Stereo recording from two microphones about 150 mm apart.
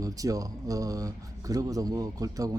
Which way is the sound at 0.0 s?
25° right (ahead or behind).